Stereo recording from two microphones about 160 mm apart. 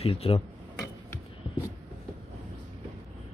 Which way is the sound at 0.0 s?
35° left (ahead or behind).